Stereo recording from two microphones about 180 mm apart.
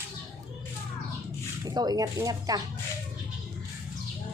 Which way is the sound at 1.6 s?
20° right (ahead or behind).